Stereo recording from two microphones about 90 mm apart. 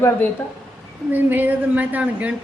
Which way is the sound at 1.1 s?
20° right (ahead or behind).